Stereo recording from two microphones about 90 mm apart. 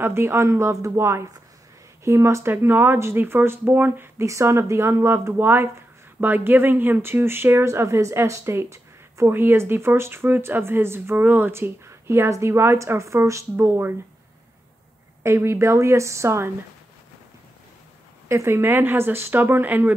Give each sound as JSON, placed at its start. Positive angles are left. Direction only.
{"t": 0.0, "sound": "speech", "side_deg": -25}
{"t": 15.2, "sound": "speech", "side_deg": -30}
{"t": 18.3, "sound": "speech", "side_deg": -30}